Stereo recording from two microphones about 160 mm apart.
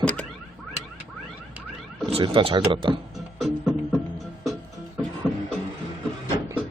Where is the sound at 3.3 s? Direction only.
Centre (ahead or behind).